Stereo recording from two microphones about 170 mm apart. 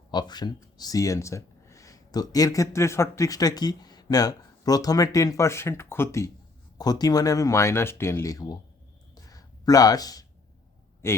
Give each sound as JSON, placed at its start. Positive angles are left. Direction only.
{"t": 0.1, "sound": "speech", "side_deg": 25}
{"t": 9.1, "sound": "a sound", "side_deg": 20}
{"t": 11.0, "sound": "a man's voice", "side_deg": 15}